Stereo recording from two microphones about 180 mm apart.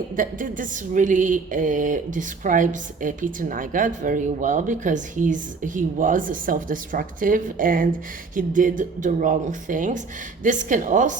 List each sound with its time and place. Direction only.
0.2 s a woman's voice: 50° right (ahead or behind)